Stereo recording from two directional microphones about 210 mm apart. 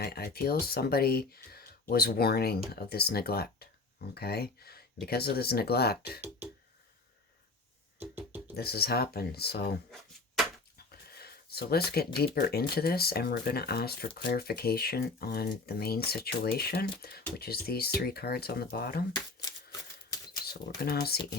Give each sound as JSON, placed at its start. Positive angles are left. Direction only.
{"t": 0.0, "sound": "speech", "side_deg": 50}
{"t": 7.9, "sound": "music", "side_deg": -10}
{"t": 8.5, "sound": "speech", "side_deg": 50}
{"t": 11.0, "sound": "speech", "side_deg": 50}
{"t": 19.1, "sound": "shuffling cards", "side_deg": 20}
{"t": 20.5, "sound": "speech", "side_deg": 50}